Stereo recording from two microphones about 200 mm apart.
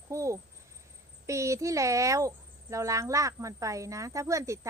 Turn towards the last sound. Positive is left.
turn(degrees=-15)  # may be behind; listen again after turning